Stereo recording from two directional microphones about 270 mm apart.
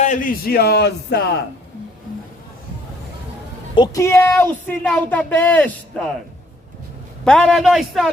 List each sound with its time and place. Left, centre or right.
0.0 s a man's voice: left
3.8 s a woman's voice: centre
7.3 s a man's voice: centre